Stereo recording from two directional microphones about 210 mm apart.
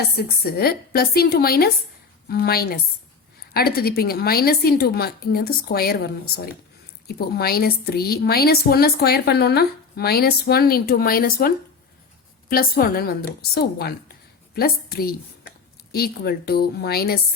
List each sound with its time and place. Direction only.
0.2 s a woman's voice: 45° left (ahead or behind)